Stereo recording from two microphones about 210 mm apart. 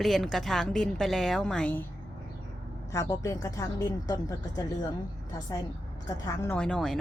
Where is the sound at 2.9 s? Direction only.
15° left (ahead or behind).